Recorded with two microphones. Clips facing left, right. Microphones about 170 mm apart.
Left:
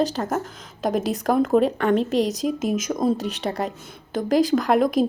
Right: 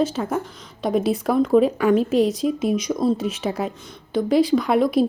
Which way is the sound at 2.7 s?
45° left (ahead or behind).